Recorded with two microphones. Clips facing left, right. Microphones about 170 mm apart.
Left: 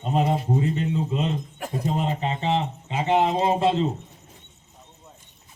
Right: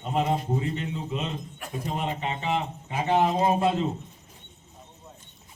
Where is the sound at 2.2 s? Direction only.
30° left (ahead or behind).